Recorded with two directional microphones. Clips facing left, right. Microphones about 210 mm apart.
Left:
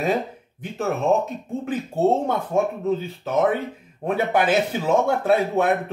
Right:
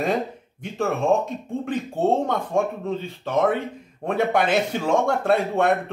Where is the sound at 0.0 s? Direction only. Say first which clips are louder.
Left 1 dB; 5° left (ahead or behind).